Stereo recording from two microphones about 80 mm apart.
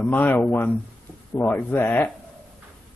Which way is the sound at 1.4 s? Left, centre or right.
Left.